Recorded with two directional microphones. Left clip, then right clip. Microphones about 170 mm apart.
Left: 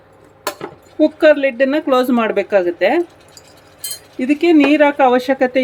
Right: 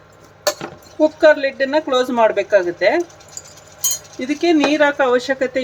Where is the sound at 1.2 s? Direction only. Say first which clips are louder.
Left 2 dB; 55° left (ahead or behind).